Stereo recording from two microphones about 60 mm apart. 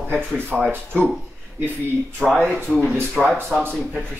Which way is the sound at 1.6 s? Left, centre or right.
Right.